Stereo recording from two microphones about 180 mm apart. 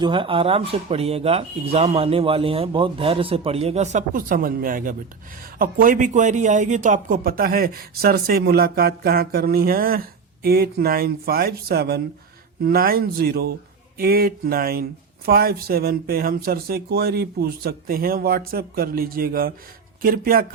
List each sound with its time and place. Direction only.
0.0 s speech: 30° right (ahead or behind); by 20.5 s 55° right (ahead or behind)